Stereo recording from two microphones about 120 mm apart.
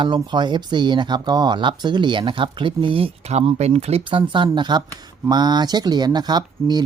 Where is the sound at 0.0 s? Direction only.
40° right (ahead or behind).